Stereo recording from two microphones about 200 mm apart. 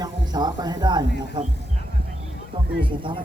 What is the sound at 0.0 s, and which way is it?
Speech, 20° right (ahead or behind).